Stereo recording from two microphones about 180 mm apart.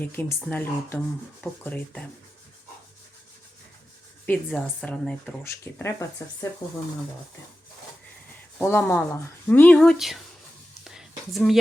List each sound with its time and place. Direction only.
0.0 s speech: 10° left (ahead or behind)
4.3 s speech: centre (ahead or behind)
8.5 s speech: 10° left (ahead or behind)
10.8 s a sound: centre (ahead or behind)